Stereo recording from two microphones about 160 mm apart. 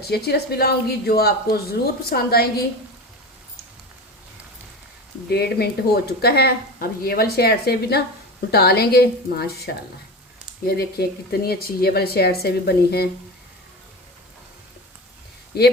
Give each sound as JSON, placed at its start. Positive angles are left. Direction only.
{"t": 0.3, "sound": "speech", "side_deg": 80}
{"t": 5.3, "sound": "a woman's voice", "side_deg": 90}
{"t": 15.5, "sound": "a woman's voice", "side_deg": 85}